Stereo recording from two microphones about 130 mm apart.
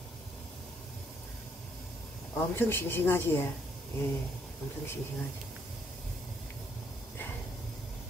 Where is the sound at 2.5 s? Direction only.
15° left (ahead or behind).